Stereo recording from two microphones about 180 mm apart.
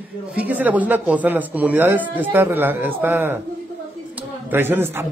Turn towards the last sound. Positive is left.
turn(degrees=-10)  # may be behind; listen again after turning